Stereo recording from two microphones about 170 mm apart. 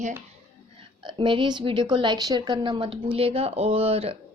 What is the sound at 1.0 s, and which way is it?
A woman's voice, 30° right (ahead or behind).